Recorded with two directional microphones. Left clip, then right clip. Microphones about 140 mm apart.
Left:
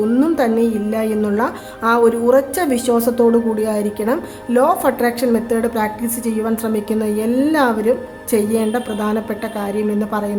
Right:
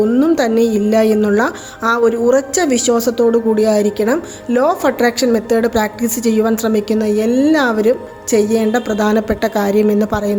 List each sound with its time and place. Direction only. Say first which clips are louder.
0.2 s a woman's voice: right 3 dB; 25° right (ahead or behind)